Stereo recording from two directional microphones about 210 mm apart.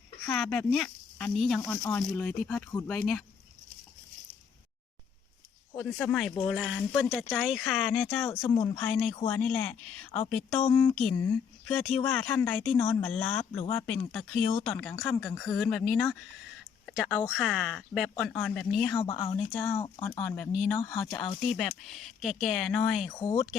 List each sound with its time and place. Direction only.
0.3 s speech: 5° left (ahead or behind)
5.7 s speech: 15° left (ahead or behind)
8.3 s speech: 15° left (ahead or behind)
8.5 s speech: 25° left (ahead or behind)
8.8 s speech: 5° left (ahead or behind)
13.4 s speech: 25° left (ahead or behind)
14.1 s speech: 5° left (ahead or behind)
18.9 s speech: 20° left (ahead or behind)
20.2 s speech: 5° left (ahead or behind)
20.7 s speech: 15° left (ahead or behind)
21.5 s speech: centre (ahead or behind)
23.0 s speech: 25° left (ahead or behind)